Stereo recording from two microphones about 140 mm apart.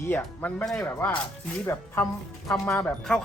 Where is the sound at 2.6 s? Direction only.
20° left (ahead or behind).